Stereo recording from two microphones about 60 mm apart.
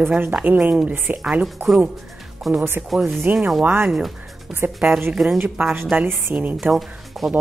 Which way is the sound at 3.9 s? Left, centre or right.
Centre.